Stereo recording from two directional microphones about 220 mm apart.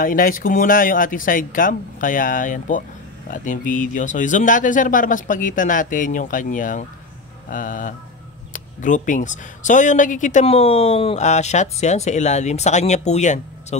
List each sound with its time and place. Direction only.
0.0 s speech: 40° left (ahead or behind)